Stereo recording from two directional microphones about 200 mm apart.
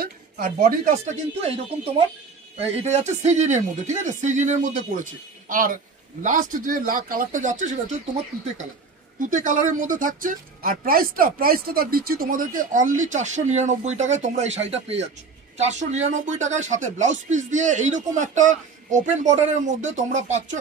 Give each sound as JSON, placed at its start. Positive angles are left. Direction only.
{"t": 0.0, "sound": "speech", "side_deg": -45}
{"t": 2.7, "sound": "speech", "side_deg": -35}
{"t": 9.3, "sound": "speech", "side_deg": -40}